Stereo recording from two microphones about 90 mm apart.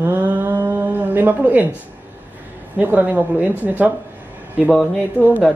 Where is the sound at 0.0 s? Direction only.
20° right (ahead or behind).